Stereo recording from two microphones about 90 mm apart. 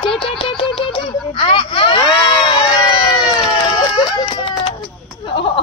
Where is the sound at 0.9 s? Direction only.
75° left (ahead or behind).